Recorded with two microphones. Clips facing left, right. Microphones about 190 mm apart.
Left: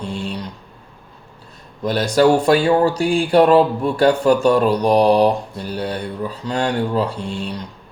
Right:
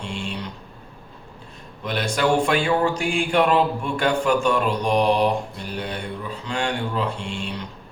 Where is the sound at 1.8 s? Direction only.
40° left (ahead or behind).